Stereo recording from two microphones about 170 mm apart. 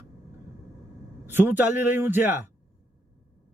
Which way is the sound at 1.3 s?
10° right (ahead or behind).